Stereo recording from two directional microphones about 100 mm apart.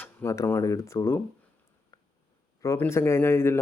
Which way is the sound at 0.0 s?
25° left (ahead or behind).